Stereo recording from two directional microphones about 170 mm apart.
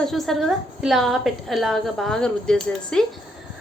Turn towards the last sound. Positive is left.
turn(degrees=5)  # may be behind; listen again after turning